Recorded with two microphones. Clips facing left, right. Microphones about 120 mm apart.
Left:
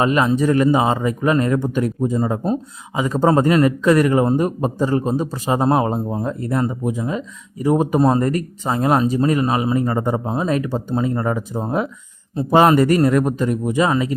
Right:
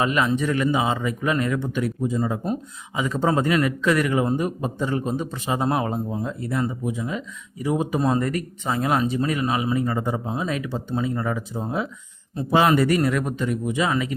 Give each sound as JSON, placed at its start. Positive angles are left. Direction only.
{"t": 0.0, "sound": "a man's voice", "side_deg": 35}